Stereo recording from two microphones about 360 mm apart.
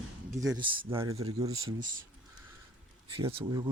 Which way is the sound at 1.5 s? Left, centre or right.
Right.